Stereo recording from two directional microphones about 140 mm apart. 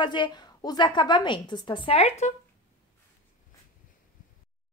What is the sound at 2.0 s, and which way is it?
Speech, 55° left (ahead or behind).